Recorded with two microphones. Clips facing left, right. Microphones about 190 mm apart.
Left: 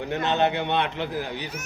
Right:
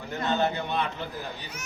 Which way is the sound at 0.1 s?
75° left (ahead or behind).